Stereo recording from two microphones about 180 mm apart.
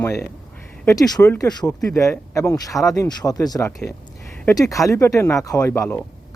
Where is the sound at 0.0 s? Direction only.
15° left (ahead or behind).